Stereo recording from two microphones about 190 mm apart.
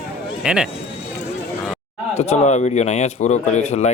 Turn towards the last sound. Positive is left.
turn(degrees=35)  # may be behind; listen again after turning